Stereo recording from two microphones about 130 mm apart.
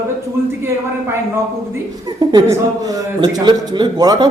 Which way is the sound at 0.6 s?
20° right (ahead or behind).